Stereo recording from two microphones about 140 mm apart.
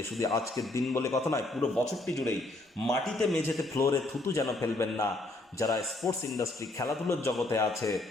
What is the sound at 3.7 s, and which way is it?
A man's voice, 20° left (ahead or behind).